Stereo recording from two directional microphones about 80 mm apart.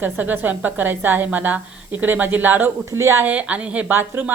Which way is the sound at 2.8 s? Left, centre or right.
Right.